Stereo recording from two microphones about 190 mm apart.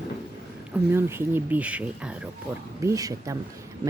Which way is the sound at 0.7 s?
10° right (ahead or behind).